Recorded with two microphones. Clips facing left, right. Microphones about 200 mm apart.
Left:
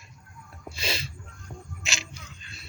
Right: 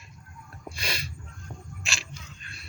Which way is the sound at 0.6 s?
25° left (ahead or behind).